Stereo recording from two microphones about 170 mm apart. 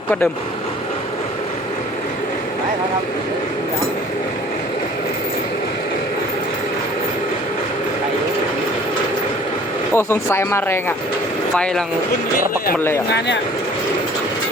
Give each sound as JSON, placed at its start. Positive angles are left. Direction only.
{"t": 9.9, "sound": "speech", "side_deg": 15}
{"t": 11.5, "sound": "speech", "side_deg": 5}
{"t": 13.1, "sound": "speech", "side_deg": 85}